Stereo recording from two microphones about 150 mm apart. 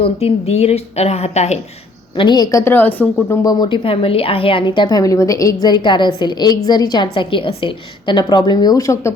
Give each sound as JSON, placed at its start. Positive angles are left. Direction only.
{"t": 0.0, "sound": "a woman's voice", "side_deg": 40}
{"t": 2.1, "sound": "a woman's voice", "side_deg": 30}